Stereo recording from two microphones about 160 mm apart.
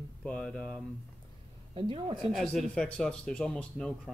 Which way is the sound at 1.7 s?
30° right (ahead or behind).